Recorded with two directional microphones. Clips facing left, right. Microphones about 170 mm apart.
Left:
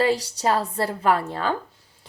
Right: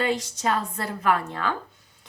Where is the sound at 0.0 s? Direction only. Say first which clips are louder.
Left 4 dB; 35° left (ahead or behind).